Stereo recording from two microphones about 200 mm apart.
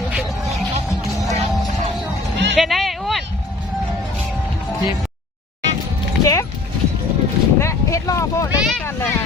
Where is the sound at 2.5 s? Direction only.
Centre (ahead or behind).